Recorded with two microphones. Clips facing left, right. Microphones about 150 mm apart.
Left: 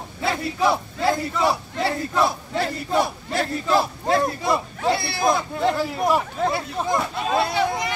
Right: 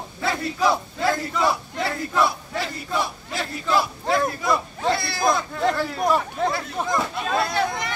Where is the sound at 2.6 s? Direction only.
55° left (ahead or behind).